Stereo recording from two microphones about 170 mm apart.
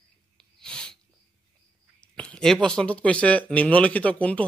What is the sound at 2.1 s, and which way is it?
Speech, 5° left (ahead or behind).